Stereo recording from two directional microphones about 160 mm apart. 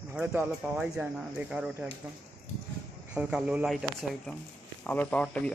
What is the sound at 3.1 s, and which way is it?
Speech, 5° right (ahead or behind).